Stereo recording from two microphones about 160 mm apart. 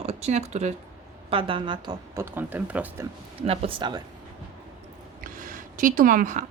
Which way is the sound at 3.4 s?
35° right (ahead or behind).